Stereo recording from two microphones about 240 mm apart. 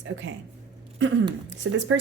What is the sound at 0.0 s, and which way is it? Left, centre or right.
Speech, right.